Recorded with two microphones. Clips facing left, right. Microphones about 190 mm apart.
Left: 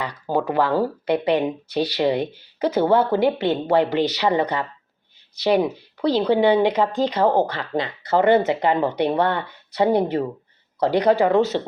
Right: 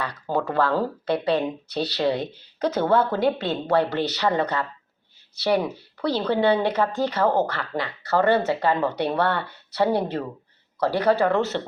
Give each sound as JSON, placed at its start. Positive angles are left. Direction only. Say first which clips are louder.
{"t": 0.0, "sound": "speech", "louder": "left 3 dB", "side_deg": 10}